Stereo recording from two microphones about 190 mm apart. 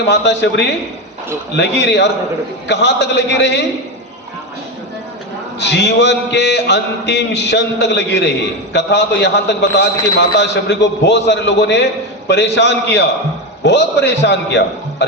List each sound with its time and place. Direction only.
0.1 s a man's voice: 65° left (ahead or behind)
5.5 s a man's voice: 65° left (ahead or behind)